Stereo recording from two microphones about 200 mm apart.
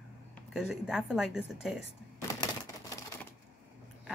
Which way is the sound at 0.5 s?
Centre (ahead or behind).